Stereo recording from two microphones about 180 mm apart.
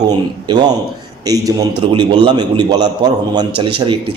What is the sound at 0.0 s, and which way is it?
A man's voice, 25° right (ahead or behind).